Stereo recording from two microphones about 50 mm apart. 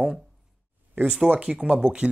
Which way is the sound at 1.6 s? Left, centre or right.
Right.